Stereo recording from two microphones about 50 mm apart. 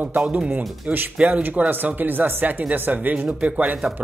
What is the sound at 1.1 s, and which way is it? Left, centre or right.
Speech, right.